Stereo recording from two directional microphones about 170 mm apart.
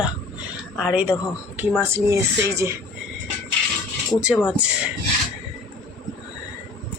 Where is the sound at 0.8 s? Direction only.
5° right (ahead or behind).